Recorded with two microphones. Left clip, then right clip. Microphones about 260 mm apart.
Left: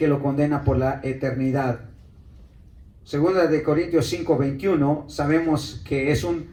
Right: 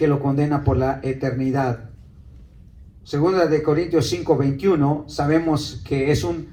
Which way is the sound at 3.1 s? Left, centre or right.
Right.